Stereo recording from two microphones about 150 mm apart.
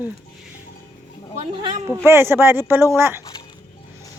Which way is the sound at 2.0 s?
15° right (ahead or behind).